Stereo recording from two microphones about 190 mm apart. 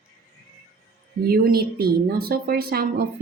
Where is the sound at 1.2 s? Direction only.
50° right (ahead or behind).